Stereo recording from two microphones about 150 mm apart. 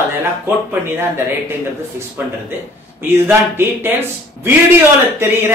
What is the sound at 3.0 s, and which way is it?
Speech, 15° right (ahead or behind).